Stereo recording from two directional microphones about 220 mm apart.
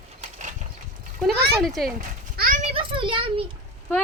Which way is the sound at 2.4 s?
40° right (ahead or behind).